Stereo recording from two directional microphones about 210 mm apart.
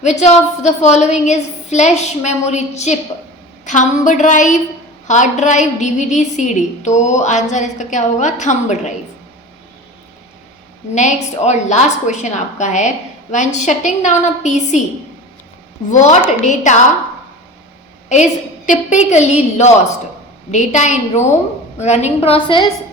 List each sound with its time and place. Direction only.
0.0 s a woman's voice: 35° left (ahead or behind)
10.9 s a woman's voice: 35° left (ahead or behind)
16.5 s a woman's voice: 35° left (ahead or behind)
18.1 s a woman's voice: 35° left (ahead or behind)